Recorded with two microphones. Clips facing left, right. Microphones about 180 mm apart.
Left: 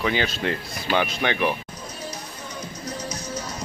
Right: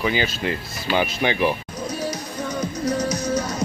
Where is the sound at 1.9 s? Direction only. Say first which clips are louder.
Right 9 dB; 80° right.